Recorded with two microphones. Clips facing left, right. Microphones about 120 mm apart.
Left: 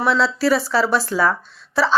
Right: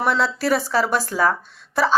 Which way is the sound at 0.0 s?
50° right (ahead or behind).